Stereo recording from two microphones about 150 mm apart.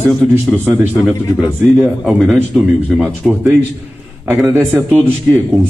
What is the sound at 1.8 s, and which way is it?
Speech, centre (ahead or behind).